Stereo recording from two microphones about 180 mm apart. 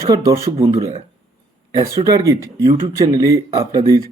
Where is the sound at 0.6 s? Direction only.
35° right (ahead or behind).